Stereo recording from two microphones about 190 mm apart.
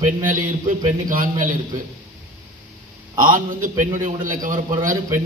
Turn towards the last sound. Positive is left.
turn(degrees=-45)  # may be behind; listen again after turning